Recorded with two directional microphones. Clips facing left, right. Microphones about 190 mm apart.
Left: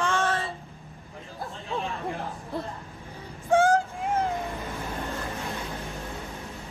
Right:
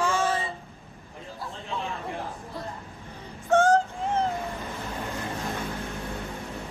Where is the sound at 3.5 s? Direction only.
15° left (ahead or behind).